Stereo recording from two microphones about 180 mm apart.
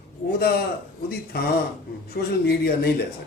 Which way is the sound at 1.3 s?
60° left (ahead or behind).